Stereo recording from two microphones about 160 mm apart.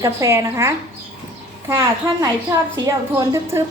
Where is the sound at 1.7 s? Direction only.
20° right (ahead or behind).